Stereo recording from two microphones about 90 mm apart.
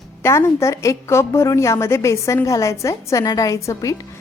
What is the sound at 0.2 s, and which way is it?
A woman's voice, 30° left (ahead or behind).